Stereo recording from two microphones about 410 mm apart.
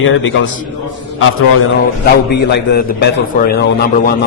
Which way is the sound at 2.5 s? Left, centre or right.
Left.